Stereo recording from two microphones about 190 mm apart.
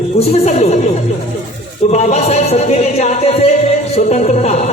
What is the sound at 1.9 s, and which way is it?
A man's voice, 35° left (ahead or behind).